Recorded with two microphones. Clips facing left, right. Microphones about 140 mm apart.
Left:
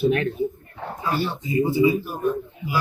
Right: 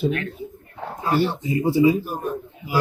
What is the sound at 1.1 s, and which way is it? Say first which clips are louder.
Speech: right 2 dB; 70° right (ahead or behind).